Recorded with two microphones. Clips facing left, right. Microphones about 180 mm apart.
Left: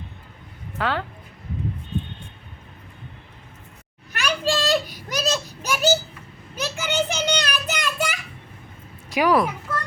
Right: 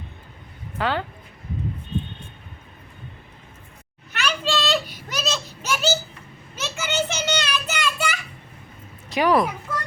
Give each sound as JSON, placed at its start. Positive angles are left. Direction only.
{"t": 0.8, "sound": "speech", "side_deg": 0}
{"t": 4.2, "sound": "a sound", "side_deg": 15}
{"t": 6.6, "sound": "children playing", "side_deg": 15}
{"t": 9.0, "sound": "a woman's voice", "side_deg": 10}